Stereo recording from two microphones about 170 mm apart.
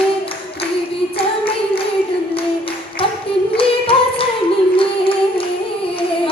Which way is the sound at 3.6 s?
30° left (ahead or behind).